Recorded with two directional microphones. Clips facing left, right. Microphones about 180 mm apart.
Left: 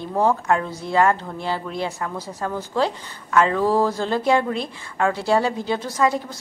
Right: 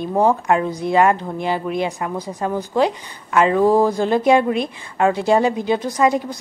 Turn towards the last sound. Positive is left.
turn(degrees=-15)  # may be behind; listen again after turning